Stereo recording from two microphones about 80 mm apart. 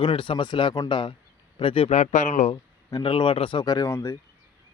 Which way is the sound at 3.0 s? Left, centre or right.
Left.